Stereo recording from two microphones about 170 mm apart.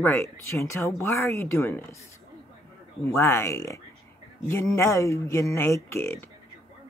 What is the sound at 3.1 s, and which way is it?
Speech, 15° left (ahead or behind).